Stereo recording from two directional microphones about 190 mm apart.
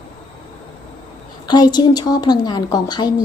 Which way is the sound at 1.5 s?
20° left (ahead or behind).